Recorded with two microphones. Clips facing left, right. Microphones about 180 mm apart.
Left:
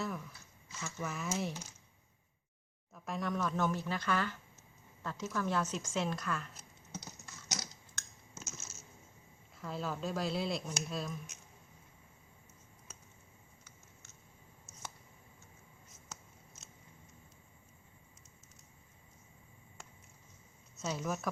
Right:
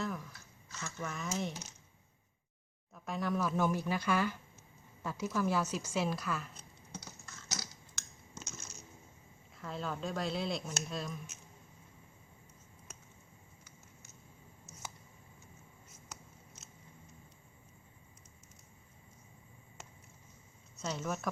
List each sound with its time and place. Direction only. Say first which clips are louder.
0.0 s a sound: right 1 dB; centre (ahead or behind)
0.7 s speech: left 1 dB; 5° left (ahead or behind)
2.9 s a woman's voice: right 2 dB; centre (ahead or behind)
7.0 s computer keyboard: even; 20° left (ahead or behind)
9.6 s speech: left 1 dB; centre (ahead or behind)
20.7 s speech: even; 5° left (ahead or behind)